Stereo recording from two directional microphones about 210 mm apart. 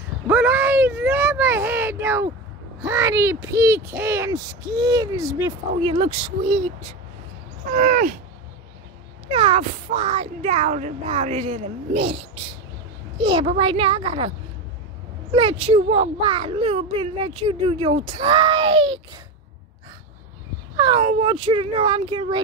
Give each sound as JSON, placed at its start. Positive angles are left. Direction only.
{"t": 0.3, "sound": "a sound", "side_deg": -10}
{"t": 2.8, "sound": "speech", "side_deg": -15}
{"t": 7.7, "sound": "groan", "side_deg": -40}
{"t": 9.3, "sound": "a child's voice", "side_deg": -30}
{"t": 15.3, "sound": "a child's voice", "side_deg": -25}
{"t": 20.7, "sound": "speech", "side_deg": -20}
{"t": 21.0, "sound": "a child's voice", "side_deg": -30}